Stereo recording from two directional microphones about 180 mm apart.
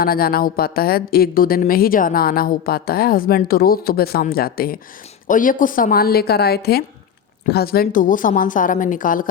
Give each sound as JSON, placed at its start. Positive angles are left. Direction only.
{"t": 0.0, "sound": "a woman's voice", "side_deg": 55}